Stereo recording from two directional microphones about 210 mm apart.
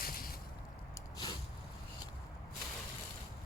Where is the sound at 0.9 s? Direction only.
20° left (ahead or behind).